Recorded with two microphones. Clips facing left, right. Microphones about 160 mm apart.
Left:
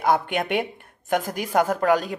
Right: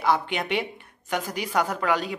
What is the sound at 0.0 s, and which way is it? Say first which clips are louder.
Speech: left 3 dB; 50° left (ahead or behind).